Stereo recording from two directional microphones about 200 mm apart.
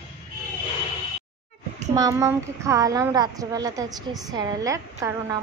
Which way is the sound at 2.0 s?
15° right (ahead or behind).